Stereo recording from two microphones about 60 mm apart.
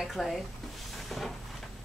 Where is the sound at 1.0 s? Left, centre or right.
Centre.